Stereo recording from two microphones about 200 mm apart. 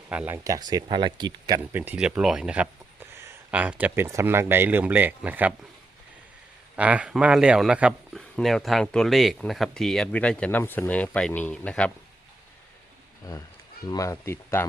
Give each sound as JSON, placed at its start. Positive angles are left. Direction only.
{"t": 0.1, "sound": "speech", "side_deg": -10}
{"t": 6.7, "sound": "speech", "side_deg": -5}
{"t": 13.2, "sound": "speech", "side_deg": 20}